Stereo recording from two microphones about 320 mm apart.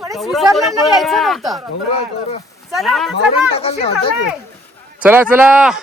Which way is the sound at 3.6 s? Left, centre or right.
Centre.